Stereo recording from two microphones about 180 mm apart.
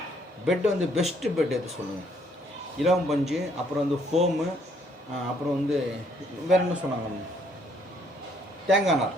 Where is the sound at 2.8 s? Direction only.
Centre (ahead or behind).